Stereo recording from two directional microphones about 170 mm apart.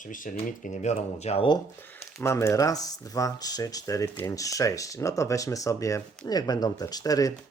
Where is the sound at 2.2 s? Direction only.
15° left (ahead or behind).